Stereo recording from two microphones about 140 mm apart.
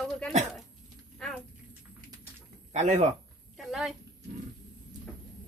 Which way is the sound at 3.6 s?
Centre (ahead or behind).